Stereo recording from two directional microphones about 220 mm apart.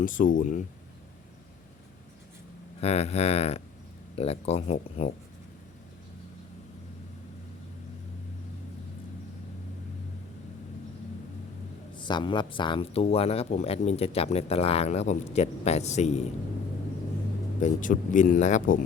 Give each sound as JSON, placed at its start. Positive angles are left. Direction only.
{"t": 0.0, "sound": "speech", "side_deg": 35}
{"t": 2.8, "sound": "speech", "side_deg": 30}
{"t": 11.9, "sound": "speech", "side_deg": 20}
{"t": 17.6, "sound": "speech", "side_deg": 35}